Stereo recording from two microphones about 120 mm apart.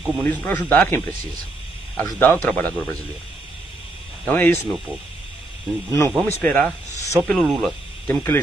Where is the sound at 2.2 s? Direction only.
15° left (ahead or behind).